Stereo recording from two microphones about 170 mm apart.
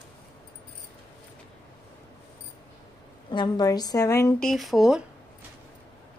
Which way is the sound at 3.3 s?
25° left (ahead or behind).